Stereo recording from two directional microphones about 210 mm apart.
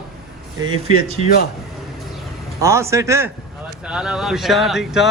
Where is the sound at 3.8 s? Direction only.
5° right (ahead or behind).